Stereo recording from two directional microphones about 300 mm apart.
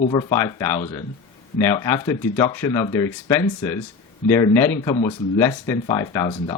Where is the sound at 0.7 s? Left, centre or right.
Left.